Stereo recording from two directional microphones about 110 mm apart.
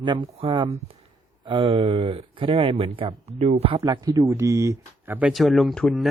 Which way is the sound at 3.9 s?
40° right (ahead or behind).